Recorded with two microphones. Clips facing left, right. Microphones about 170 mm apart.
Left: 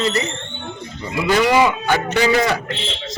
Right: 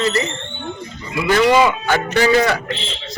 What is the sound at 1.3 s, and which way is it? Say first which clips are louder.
Speech: right 2 dB; 15° left (ahead or behind).